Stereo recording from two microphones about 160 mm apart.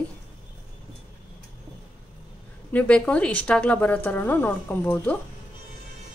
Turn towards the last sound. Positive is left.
turn(degrees=10)  # may be behind; listen again after turning